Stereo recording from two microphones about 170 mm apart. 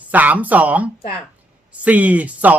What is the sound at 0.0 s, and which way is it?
Speech, 10° right (ahead or behind).